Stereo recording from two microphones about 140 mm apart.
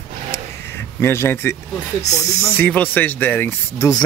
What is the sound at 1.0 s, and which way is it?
Speech, 15° left (ahead or behind).